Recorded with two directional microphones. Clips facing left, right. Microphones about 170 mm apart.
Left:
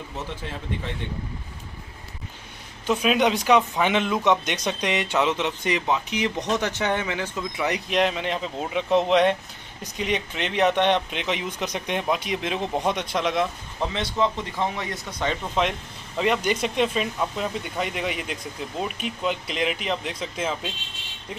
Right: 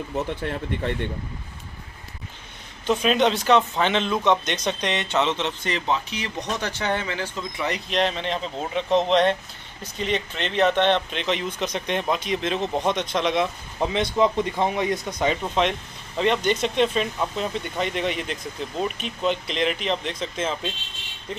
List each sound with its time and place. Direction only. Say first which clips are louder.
0.4 s speech: right 5 dB; 60° right (ahead or behind)
2.9 s speech: right 1 dB; 5° left (ahead or behind)
13.7 s speech: right 4 dB; 15° right (ahead or behind)
16.2 s speech: right 1 dB; 5° left (ahead or behind)